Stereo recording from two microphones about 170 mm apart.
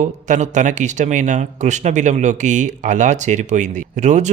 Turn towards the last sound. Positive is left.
turn(degrees=-45)  # may be behind; listen again after turning